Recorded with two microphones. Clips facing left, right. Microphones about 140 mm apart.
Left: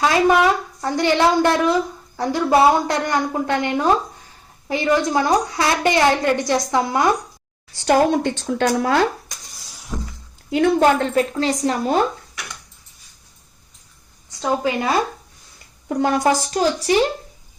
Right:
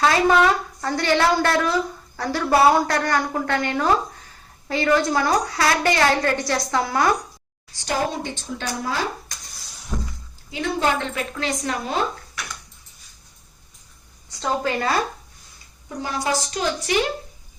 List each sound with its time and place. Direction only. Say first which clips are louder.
0.0 s a woman's voice: left 2 dB; 15° left (ahead or behind)
7.9 s speech: left 9 dB; 60° left (ahead or behind)
9.9 s shatter: even; 5° left (ahead or behind)
10.5 s a woman's voice: left 7 dB; 50° left (ahead or behind); by 11.8 s 30° left (ahead or behind)
14.3 s a woman's voice: left 3 dB; 15° left (ahead or behind)
15.9 s a woman's voice: left 8 dB; 60° left (ahead or behind); by 17.0 s 35° left (ahead or behind)